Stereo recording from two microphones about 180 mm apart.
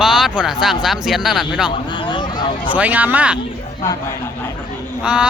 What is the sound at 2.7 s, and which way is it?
Speech, 10° right (ahead or behind).